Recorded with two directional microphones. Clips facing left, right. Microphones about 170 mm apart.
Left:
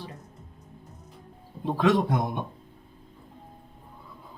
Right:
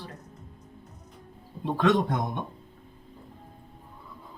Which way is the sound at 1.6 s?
Centre (ahead or behind).